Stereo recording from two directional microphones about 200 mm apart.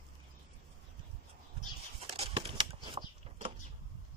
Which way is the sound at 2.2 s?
30° right (ahead or behind).